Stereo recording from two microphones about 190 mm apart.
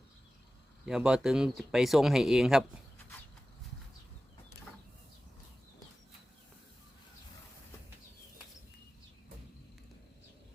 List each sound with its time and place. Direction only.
0.9 s speech: 5° right (ahead or behind)